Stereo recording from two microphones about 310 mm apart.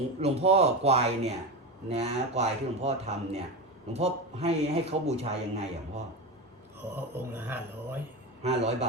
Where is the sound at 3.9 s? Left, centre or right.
Centre.